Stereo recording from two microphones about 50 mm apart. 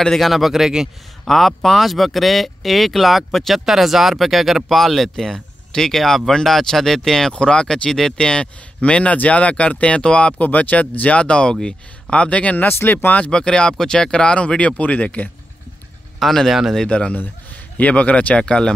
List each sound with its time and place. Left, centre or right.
0.2 s speech: centre
1.2 s speech: centre; by 10.3 s left
10.4 s speech: left
12.6 s speech: left
13.1 s speech: left
16.2 s speech: centre
16.7 s speech: centre
18.4 s speech: centre